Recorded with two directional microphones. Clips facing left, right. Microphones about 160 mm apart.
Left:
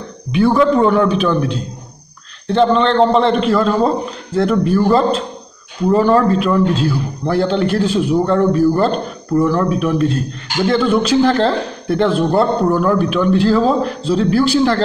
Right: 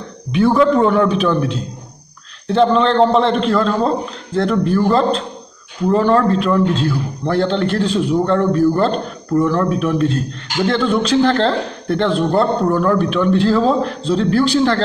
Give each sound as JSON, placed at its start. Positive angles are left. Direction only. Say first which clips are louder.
{"t": 0.3, "sound": "a man's voice", "louder": "even", "side_deg": 0}